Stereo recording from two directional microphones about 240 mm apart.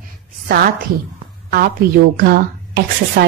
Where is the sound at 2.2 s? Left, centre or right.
Right.